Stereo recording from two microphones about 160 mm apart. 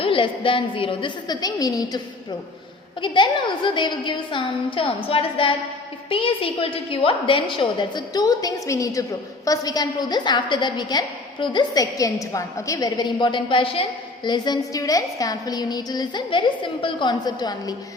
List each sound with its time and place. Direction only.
0.0 s a woman's voice: 35° left (ahead or behind)
3.0 s a woman's voice: 30° left (ahead or behind)